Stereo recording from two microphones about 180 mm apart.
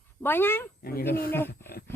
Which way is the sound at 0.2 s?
10° left (ahead or behind).